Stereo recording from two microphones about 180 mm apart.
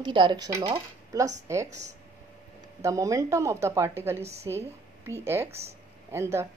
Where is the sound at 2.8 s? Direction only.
15° right (ahead or behind).